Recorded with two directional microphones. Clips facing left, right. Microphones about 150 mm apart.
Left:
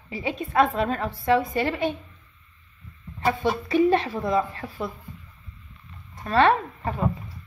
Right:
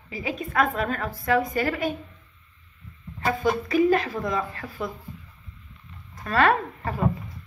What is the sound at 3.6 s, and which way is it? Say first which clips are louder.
A child's voice: left 2 dB; 30° left (ahead or behind).